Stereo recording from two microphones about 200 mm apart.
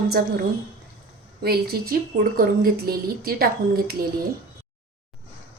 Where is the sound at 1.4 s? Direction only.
50° right (ahead or behind).